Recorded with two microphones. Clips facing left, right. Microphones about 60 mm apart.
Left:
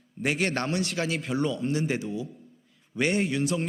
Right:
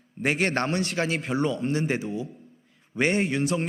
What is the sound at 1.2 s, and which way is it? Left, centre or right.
A man's voice, right.